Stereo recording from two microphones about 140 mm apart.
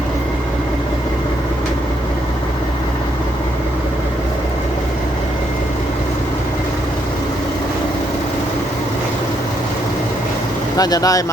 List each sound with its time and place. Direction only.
10.8 s speech: 25° left (ahead or behind)